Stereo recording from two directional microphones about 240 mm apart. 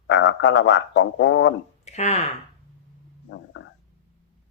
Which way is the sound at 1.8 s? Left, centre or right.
Left.